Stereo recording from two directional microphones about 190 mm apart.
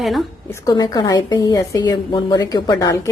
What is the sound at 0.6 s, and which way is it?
A woman's voice, 20° left (ahead or behind).